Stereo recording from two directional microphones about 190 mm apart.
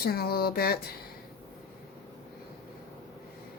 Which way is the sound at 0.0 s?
55° left (ahead or behind).